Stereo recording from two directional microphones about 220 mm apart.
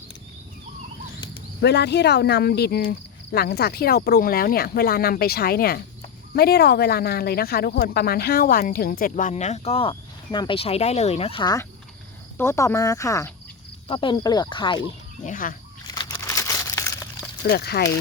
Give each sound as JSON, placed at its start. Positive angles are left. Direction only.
{"t": 1.6, "sound": "speech", "side_deg": 50}
{"t": 15.2, "sound": "speech", "side_deg": 35}
{"t": 16.0, "sound": "a sound", "side_deg": 15}
{"t": 17.5, "sound": "speech", "side_deg": 45}